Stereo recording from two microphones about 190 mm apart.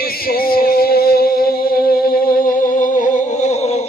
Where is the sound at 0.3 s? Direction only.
50° left (ahead or behind).